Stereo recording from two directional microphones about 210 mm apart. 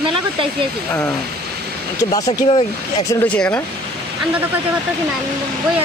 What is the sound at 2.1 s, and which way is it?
Speech, 25° left (ahead or behind).